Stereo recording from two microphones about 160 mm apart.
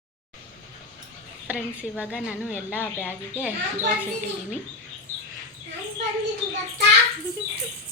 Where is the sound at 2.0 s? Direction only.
5° right (ahead or behind).